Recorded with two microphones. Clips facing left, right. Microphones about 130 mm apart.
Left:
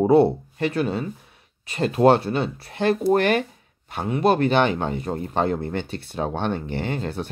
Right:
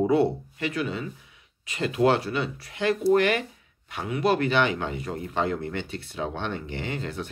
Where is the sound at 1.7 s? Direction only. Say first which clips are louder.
Left 5 dB; 45° left (ahead or behind).